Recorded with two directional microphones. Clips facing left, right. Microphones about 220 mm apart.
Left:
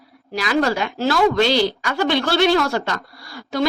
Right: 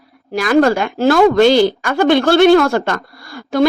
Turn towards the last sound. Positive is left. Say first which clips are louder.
# right 7 dB
turn(degrees=-50)  # may be behind; listen again after turning